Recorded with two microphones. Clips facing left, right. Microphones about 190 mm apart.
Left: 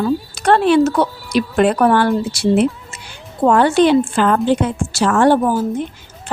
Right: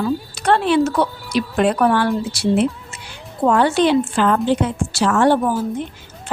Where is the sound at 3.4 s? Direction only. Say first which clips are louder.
Left 3 dB; 50° left (ahead or behind).